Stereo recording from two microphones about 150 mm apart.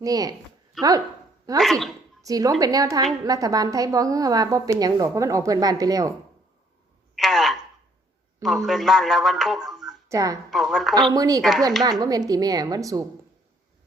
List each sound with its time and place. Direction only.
0.0 s a woman's voice: 25° right (ahead or behind)
1.5 s a woman's voice: centre (ahead or behind)
2.2 s a woman's voice: 25° right (ahead or behind)
7.2 s a sound: centre (ahead or behind)
8.6 s speech: centre (ahead or behind)
10.1 s a woman's voice: 20° right (ahead or behind)
10.5 s a woman's voice: centre (ahead or behind)
11.1 s a woman's voice: 25° right (ahead or behind)